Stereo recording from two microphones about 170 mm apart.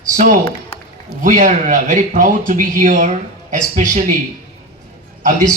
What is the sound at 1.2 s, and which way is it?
Speech, 50° right (ahead or behind).